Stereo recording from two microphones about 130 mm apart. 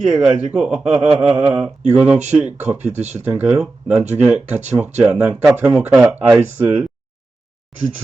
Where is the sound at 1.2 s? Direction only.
50° right (ahead or behind).